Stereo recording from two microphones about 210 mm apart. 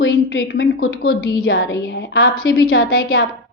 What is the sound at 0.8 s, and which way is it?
A woman's voice, 75° left (ahead or behind).